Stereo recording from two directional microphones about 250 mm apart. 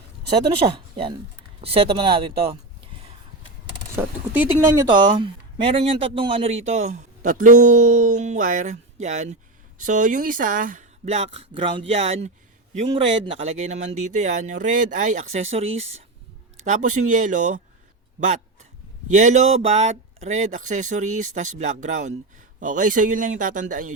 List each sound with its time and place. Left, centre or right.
0.9 s speech: centre
3.9 s speech: centre; by 17.6 s right
19.0 s speech: right